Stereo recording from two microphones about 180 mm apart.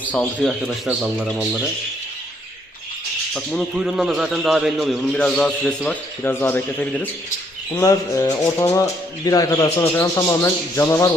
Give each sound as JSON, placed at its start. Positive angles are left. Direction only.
{"t": 0.3, "sound": "a man's voice", "side_deg": -5}
{"t": 3.3, "sound": "a man's voice", "side_deg": 0}